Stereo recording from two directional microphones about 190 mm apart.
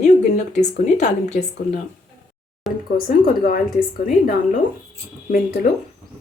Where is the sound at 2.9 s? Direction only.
50° left (ahead or behind).